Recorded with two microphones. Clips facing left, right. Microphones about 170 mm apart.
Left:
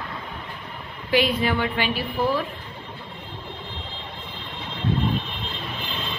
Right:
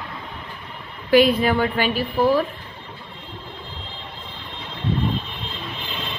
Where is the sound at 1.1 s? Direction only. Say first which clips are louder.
Right 6 dB; 45° right (ahead or behind).